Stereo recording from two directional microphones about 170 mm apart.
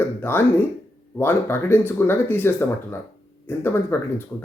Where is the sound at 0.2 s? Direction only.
15° left (ahead or behind).